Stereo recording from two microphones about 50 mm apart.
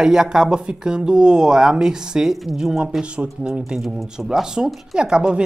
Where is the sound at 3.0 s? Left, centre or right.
Right.